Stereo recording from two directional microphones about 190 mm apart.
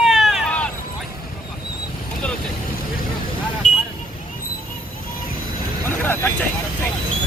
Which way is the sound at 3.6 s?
40° left (ahead or behind).